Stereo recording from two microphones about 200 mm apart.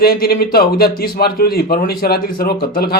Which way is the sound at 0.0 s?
50° left (ahead or behind).